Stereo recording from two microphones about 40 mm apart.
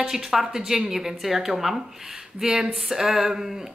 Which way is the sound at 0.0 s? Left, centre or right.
Centre.